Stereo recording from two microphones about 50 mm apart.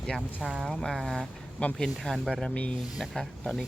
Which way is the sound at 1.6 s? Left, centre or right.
Left.